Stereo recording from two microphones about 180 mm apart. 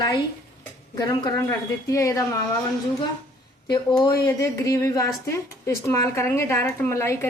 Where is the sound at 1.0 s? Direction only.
20° left (ahead or behind).